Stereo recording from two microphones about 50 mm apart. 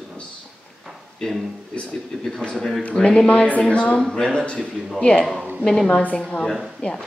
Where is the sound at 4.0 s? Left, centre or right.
Centre.